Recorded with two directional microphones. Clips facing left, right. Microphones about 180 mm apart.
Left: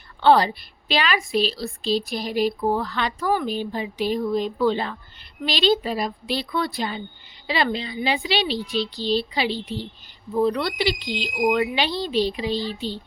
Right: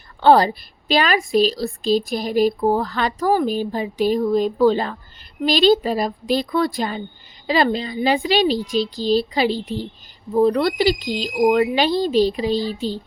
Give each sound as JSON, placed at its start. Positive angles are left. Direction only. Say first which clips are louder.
{"t": 0.2, "sound": "speech", "louder": "right 3 dB", "side_deg": -45}